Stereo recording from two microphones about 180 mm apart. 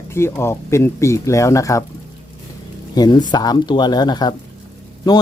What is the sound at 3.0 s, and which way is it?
Speech, 20° left (ahead or behind).